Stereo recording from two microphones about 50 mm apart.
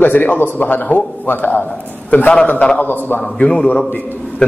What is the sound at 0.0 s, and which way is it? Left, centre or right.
Speech, left.